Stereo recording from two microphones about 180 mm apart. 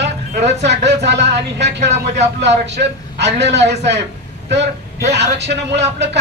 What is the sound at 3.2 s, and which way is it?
Speech, 70° right (ahead or behind).